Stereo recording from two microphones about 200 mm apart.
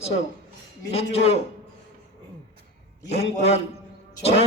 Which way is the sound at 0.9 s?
30° left (ahead or behind).